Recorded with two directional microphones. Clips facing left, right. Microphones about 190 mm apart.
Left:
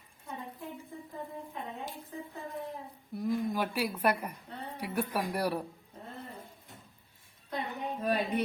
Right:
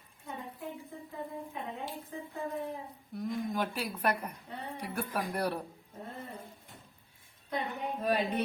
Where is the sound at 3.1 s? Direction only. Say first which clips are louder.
Left 3 dB; centre (ahead or behind).